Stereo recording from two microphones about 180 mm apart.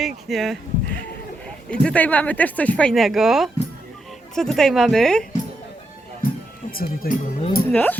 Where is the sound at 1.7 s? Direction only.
5° left (ahead or behind).